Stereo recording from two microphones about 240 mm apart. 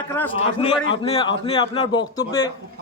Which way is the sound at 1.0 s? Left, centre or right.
Left.